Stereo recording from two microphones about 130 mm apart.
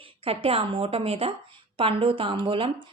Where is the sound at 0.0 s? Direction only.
45° right (ahead or behind).